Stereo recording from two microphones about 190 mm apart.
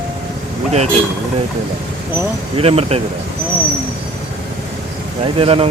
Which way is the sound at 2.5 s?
30° right (ahead or behind).